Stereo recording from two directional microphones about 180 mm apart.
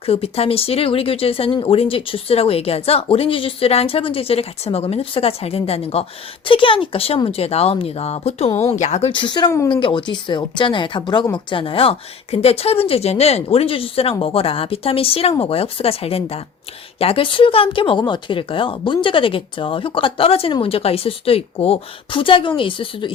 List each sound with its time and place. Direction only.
0.0 s speech: 35° left (ahead or behind); by 9.8 s 15° left (ahead or behind)
9.8 s speech: 25° left (ahead or behind)